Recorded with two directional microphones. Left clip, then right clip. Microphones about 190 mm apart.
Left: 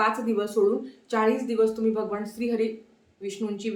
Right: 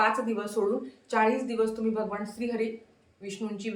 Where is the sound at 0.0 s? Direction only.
15° left (ahead or behind).